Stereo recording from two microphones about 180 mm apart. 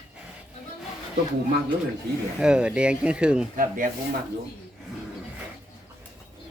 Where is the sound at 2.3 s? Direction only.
5° right (ahead or behind).